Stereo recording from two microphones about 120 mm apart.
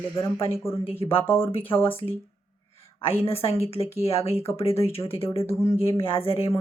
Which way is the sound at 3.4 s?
25° left (ahead or behind).